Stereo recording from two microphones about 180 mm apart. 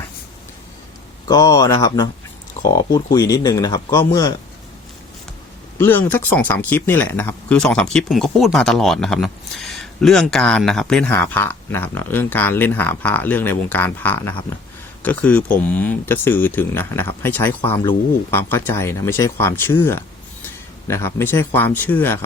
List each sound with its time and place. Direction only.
1.3 s speech: 20° left (ahead or behind)
5.7 s speech: 10° left (ahead or behind)